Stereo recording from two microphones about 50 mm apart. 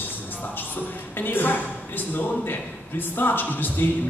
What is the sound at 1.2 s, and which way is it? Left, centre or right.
Speech, left.